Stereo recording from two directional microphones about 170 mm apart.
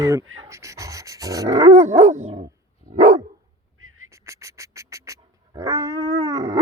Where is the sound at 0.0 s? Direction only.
20° right (ahead or behind).